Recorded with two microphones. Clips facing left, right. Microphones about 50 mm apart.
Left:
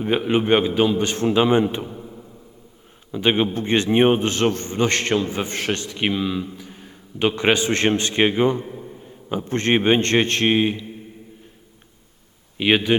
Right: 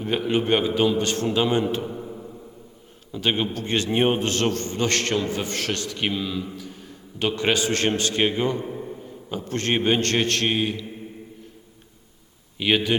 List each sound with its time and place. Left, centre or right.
0.0 s a man's voice: centre
0.7 s a man's voice: centre
0.9 s a man's voice: left
1.9 s a sound: centre
3.1 s a man's voice: left
8.6 s a sound: centre
9.3 s a man's voice: left
12.5 s a man's voice: centre